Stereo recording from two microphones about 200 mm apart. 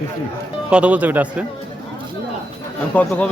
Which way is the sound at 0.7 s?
5° right (ahead or behind).